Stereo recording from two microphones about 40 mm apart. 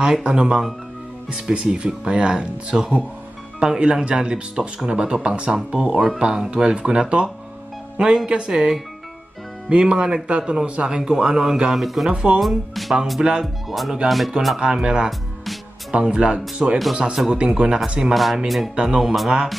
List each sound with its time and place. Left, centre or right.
0.0 s speech: right
2.7 s speech: centre
8.5 s speech: centre
12.1 s speech: right
12.4 s speech: centre
13.2 s speech: right
13.7 s speech: centre
14.6 s speech: centre
18.1 s speech: centre
18.8 s speech: centre